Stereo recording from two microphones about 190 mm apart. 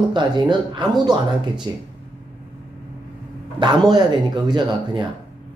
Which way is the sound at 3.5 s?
25° right (ahead or behind).